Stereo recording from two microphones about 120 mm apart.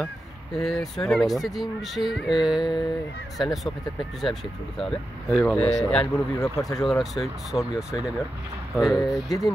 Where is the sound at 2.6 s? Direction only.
40° left (ahead or behind).